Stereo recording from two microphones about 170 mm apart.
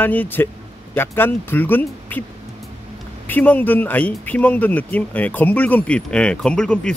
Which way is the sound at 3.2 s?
10° left (ahead or behind).